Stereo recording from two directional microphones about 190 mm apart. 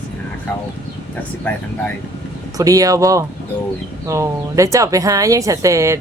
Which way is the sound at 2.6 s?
15° right (ahead or behind).